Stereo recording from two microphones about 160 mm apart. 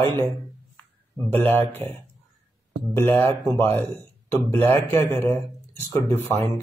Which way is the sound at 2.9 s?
15° left (ahead or behind).